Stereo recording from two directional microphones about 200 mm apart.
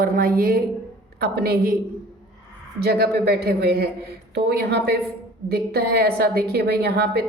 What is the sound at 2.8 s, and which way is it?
A woman's voice, 50° right (ahead or behind).